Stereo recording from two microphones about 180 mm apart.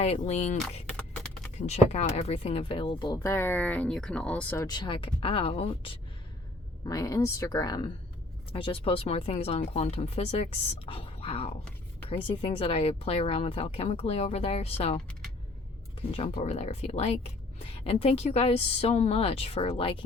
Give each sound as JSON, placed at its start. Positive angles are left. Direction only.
{"t": 0.0, "sound": "speech", "side_deg": 35}
{"t": 0.9, "sound": "beatboxing", "side_deg": 5}
{"t": 1.5, "sound": "speech", "side_deg": 40}
{"t": 3.3, "sound": "speech", "side_deg": 10}
{"t": 4.6, "sound": "speech", "side_deg": 25}
{"t": 6.8, "sound": "speech", "side_deg": 20}